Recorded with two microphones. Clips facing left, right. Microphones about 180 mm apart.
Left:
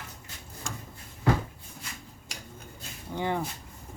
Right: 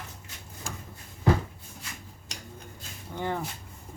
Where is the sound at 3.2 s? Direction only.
15° left (ahead or behind).